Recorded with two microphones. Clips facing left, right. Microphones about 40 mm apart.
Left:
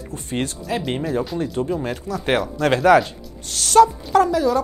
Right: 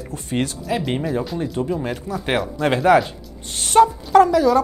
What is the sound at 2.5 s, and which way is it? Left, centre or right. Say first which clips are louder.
Speech: left 1 dB; centre.